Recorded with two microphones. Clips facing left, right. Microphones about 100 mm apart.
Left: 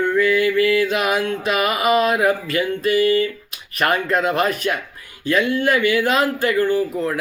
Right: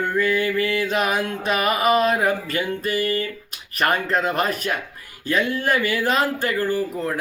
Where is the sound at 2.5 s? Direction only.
35° right (ahead or behind).